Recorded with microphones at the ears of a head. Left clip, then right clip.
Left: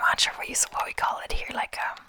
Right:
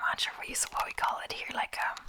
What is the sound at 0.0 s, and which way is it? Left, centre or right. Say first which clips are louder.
Speech: left 8 dB; left.